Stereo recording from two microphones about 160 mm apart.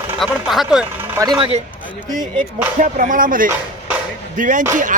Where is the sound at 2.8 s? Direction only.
55° right (ahead or behind).